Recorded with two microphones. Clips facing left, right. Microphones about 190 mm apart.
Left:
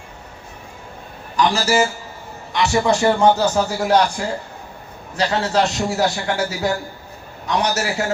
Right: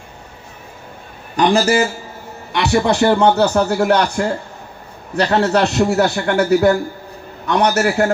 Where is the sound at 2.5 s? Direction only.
60° right (ahead or behind).